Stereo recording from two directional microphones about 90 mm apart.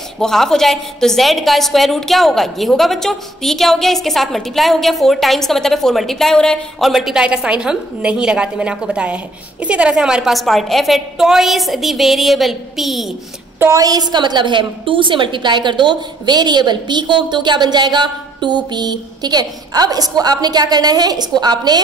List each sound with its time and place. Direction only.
0.2 s a woman's voice: 5° left (ahead or behind)
6.9 s a woman's voice: 5° right (ahead or behind)
13.6 s a woman's voice: 40° right (ahead or behind)